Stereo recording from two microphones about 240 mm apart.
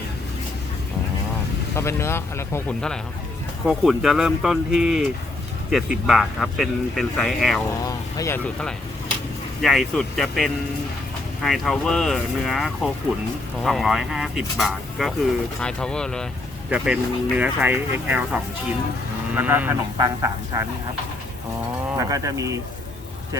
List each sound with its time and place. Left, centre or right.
1.7 s speech: centre
7.9 s speech: centre
9.6 s speech: centre
21.9 s speech: centre